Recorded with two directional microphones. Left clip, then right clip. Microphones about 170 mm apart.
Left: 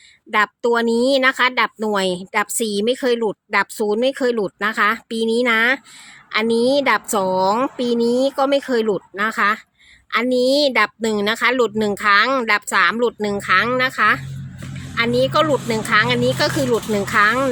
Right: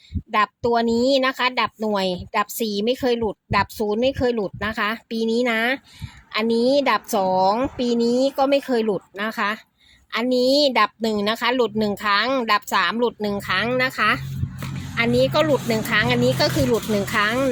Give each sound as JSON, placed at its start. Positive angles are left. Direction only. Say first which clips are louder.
{"t": 0.3, "sound": "speech", "louder": "left 3 dB", "side_deg": 15}